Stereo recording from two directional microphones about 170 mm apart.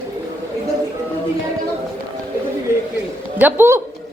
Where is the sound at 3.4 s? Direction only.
15° right (ahead or behind).